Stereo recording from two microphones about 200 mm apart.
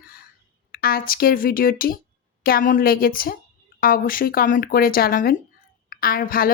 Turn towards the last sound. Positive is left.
turn(degrees=45)  # may be behind; listen again after turning